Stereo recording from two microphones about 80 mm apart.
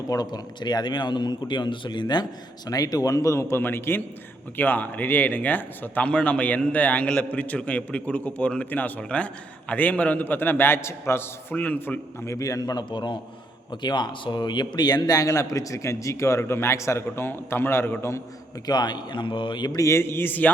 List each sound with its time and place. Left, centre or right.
0.1 s speech: left
2.6 s a man's voice: left
11.5 s a man's voice: centre
12.2 s a man's voice: left
18.6 s speech: left
19.7 s a man's voice: left